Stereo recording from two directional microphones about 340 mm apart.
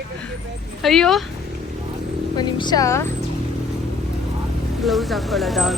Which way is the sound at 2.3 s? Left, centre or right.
Centre.